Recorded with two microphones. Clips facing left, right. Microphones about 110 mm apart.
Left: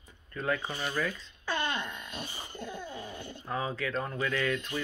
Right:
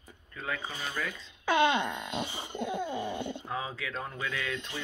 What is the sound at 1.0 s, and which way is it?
Speech, 15° right (ahead or behind).